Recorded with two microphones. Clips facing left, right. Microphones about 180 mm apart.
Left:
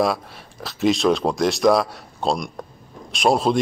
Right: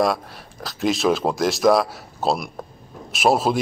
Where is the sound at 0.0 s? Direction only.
Centre (ahead or behind).